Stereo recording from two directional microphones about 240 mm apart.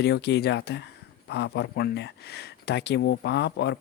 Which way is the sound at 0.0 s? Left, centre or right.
Left.